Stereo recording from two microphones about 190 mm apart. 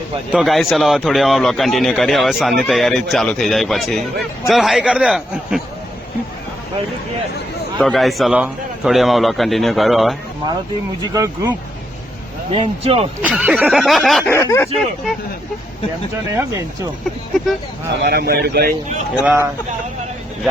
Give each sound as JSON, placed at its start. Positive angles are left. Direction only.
{"t": 0.3, "sound": "a man's voice", "side_deg": 0}
{"t": 7.8, "sound": "a man's voice", "side_deg": 0}
{"t": 11.0, "sound": "speech", "side_deg": -20}
{"t": 12.5, "sound": "speech", "side_deg": -30}
{"t": 13.2, "sound": "a man's voice", "side_deg": -5}
{"t": 14.3, "sound": "speech", "side_deg": 15}
{"t": 16.3, "sound": "speech", "side_deg": -15}
{"t": 18.0, "sound": "a man's voice", "side_deg": -55}
{"t": 19.2, "sound": "speech", "side_deg": -10}